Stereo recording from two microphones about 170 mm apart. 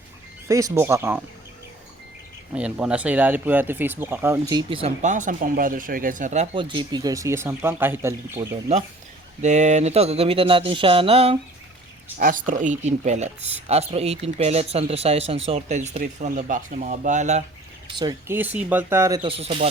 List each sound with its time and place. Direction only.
0.4 s speech: 20° right (ahead or behind)
2.6 s speech: 5° right (ahead or behind); by 4.9 s 30° right (ahead or behind)
5.0 s speech: 50° right (ahead or behind)
6.6 s speech: 30° right (ahead or behind)
9.4 s speech: 45° right (ahead or behind)
12.2 s speech: 50° right (ahead or behind)
18.0 s speech: 15° right (ahead or behind)
19.2 s speech: 35° right (ahead or behind)